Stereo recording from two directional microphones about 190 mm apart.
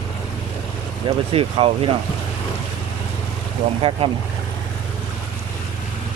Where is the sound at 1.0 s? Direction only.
30° right (ahead or behind).